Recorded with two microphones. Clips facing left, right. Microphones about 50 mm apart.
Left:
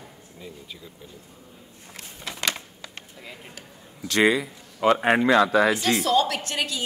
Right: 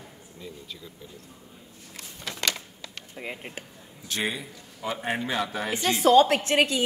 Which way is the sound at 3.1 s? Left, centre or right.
Right.